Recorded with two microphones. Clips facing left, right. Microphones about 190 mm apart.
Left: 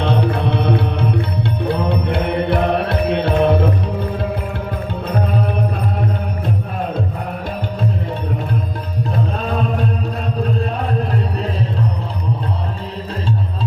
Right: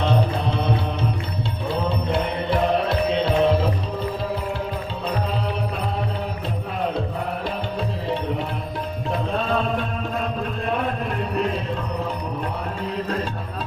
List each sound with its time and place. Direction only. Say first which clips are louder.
0.0 s music: left 4 dB; 65° left (ahead or behind)